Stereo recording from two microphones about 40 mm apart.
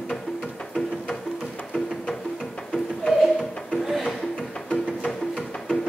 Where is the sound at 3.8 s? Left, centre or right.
Centre.